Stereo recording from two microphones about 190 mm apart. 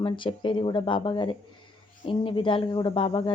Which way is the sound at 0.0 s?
25° left (ahead or behind).